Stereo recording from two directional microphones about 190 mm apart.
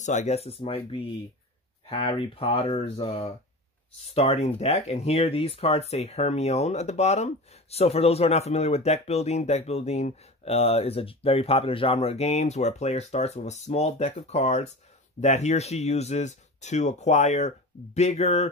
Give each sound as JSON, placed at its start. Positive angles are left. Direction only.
{"t": 0.0, "sound": "speech", "side_deg": 35}